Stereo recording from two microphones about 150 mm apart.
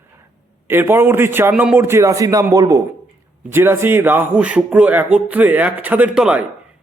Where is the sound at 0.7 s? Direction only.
15° right (ahead or behind).